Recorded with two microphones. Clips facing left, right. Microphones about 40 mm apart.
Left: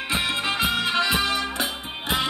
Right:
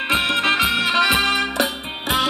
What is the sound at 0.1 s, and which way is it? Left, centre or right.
Music, right.